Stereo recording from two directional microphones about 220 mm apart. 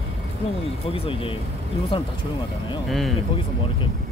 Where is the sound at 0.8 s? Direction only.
25° left (ahead or behind).